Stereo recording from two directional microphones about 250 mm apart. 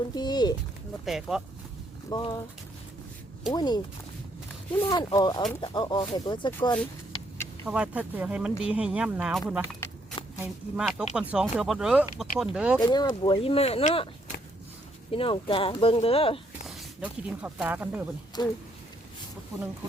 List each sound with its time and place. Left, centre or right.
0.1 s speech: centre
1.0 s speech: centre
2.0 s speech: centre
3.5 s speech: centre
4.8 s speech: centre
7.6 s speech: centre
9.8 s shuffling cards: centre
10.4 s speech: centre
12.8 s speech: centre
15.1 s speech: left
16.6 s speech: centre
18.4 s speech: centre